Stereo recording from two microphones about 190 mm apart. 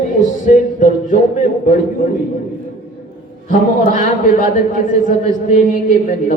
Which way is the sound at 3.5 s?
45° left (ahead or behind).